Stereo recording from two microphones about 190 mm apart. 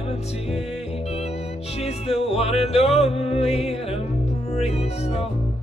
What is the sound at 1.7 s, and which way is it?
Music, 35° left (ahead or behind).